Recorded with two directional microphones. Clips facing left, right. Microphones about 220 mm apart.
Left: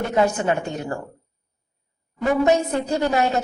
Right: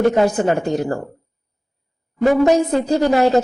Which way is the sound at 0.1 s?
35° right (ahead or behind).